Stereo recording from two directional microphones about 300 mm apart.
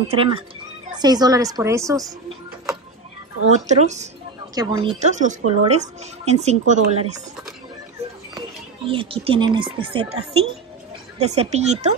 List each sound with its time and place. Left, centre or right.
0.1 s a woman's voice: centre
3.4 s a woman's voice: right
8.4 s a woman's voice: centre